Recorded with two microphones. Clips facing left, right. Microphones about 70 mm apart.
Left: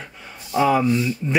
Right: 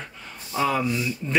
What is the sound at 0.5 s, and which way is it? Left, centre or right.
Speech, centre.